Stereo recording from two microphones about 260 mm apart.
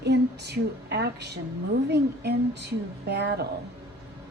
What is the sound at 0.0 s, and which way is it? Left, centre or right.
A woman's voice, right.